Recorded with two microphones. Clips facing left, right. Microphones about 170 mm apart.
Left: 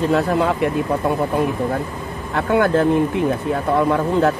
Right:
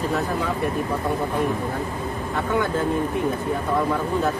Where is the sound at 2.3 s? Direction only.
70° left (ahead or behind).